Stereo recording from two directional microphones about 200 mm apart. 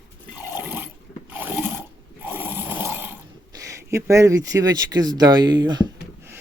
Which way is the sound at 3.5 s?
15° right (ahead or behind).